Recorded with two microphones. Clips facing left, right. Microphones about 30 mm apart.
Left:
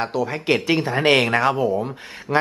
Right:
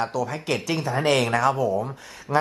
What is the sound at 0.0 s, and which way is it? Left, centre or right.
Speech, left.